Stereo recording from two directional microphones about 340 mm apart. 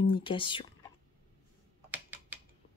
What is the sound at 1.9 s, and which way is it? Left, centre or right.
Typing, centre.